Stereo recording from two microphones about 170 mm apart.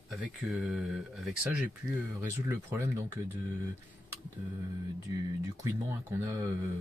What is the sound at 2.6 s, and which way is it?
Speech, 15° right (ahead or behind).